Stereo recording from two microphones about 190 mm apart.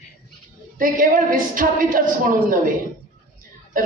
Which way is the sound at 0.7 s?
45° right (ahead or behind).